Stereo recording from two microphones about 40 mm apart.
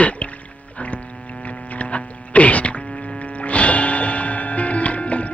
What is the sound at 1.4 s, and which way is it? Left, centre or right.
Mains hum, left.